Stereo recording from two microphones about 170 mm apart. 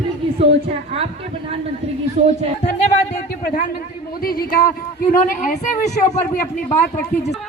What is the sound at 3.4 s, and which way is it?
Speech, 60° left (ahead or behind).